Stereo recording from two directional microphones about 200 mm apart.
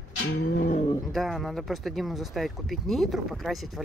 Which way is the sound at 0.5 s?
45° left (ahead or behind).